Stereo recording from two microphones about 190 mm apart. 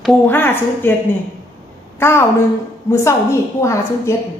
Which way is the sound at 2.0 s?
10° left (ahead or behind).